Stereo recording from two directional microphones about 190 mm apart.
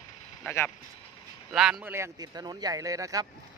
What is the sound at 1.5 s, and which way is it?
Speech, 5° right (ahead or behind).